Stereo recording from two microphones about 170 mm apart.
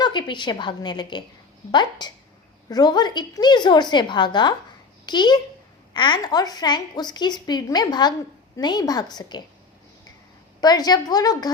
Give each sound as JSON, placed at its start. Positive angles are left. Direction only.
{"t": 0.0, "sound": "speech", "side_deg": 25}
{"t": 10.6, "sound": "speech", "side_deg": 25}